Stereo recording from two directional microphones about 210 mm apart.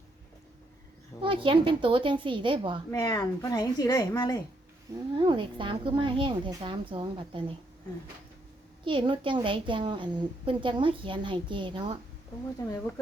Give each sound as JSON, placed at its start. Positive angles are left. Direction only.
{"t": 1.2, "sound": "a child's voice", "side_deg": -25}
{"t": 2.9, "sound": "a woman's voice", "side_deg": 15}
{"t": 5.1, "sound": "a child's voice", "side_deg": -20}
{"t": 8.8, "sound": "a child's voice", "side_deg": -25}